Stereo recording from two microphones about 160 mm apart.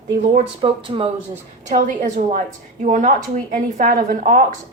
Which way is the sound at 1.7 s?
55° right (ahead or behind).